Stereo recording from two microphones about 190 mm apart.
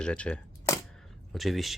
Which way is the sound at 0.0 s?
5° left (ahead or behind).